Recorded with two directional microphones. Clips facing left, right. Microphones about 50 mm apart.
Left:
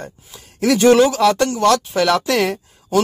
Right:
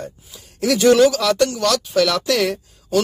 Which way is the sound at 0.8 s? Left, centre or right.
Left.